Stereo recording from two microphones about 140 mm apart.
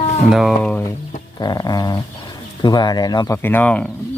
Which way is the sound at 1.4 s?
30° left (ahead or behind).